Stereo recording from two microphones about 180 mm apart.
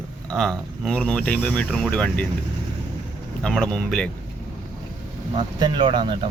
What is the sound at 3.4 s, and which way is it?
Speech, 5° left (ahead or behind).